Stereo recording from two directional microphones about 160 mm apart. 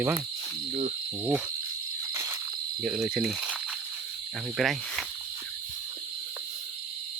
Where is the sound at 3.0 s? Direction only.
5° right (ahead or behind).